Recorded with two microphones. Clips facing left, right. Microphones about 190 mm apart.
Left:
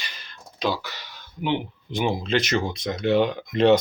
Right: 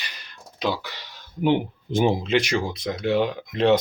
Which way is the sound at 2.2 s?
15° right (ahead or behind).